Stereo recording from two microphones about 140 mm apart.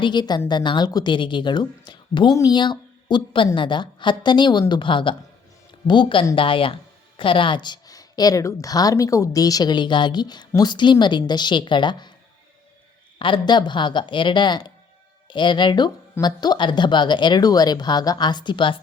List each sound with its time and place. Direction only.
0.0 s a woman's voice: 30° left (ahead or behind)
13.1 s a woman's voice: 35° left (ahead or behind)